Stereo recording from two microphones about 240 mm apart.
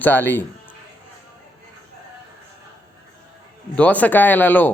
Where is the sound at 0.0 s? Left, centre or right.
Centre.